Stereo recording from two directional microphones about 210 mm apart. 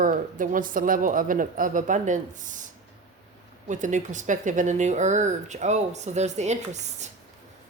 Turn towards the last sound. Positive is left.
turn(degrees=-35)  # may be behind; listen again after turning